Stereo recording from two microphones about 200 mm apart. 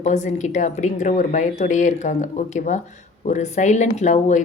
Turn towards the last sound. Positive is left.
turn(degrees=35)  # may be behind; listen again after turning